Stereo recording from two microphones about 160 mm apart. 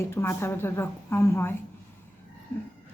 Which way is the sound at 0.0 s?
15° left (ahead or behind).